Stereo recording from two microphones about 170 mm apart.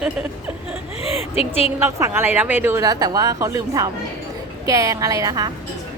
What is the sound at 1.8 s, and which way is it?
A woman's voice, 15° right (ahead or behind).